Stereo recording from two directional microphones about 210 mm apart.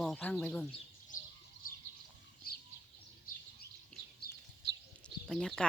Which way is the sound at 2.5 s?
45° left (ahead or behind).